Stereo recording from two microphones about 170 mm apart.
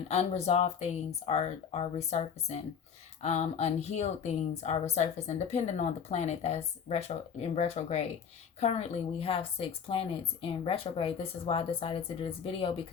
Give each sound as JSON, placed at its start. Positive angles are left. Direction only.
{"t": 0.1, "sound": "a woman's voice", "side_deg": 40}